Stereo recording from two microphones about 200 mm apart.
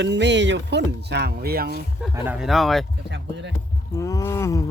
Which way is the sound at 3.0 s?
60° right (ahead or behind).